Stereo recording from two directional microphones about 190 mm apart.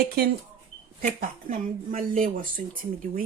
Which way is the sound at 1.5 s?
45° right (ahead or behind).